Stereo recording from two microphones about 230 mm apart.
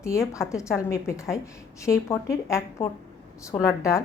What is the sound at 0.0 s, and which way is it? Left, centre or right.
A woman's voice, centre.